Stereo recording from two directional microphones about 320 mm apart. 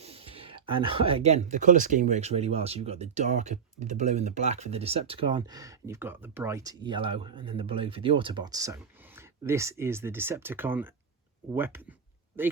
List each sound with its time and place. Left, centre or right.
0.0 s speech: centre